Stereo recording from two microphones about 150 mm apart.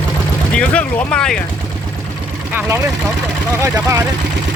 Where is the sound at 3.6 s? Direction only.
25° right (ahead or behind).